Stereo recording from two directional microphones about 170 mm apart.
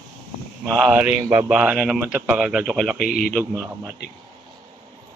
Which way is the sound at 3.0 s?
60° left (ahead or behind).